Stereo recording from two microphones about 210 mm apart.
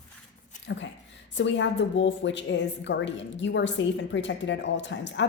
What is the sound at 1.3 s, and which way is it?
A woman's voice, 60° left (ahead or behind).